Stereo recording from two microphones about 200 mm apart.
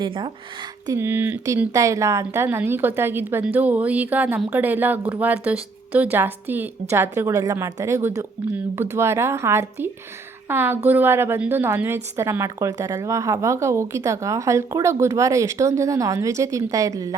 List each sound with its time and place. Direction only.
0.0 s speech: 25° right (ahead or behind)
0.9 s speech: 10° right (ahead or behind)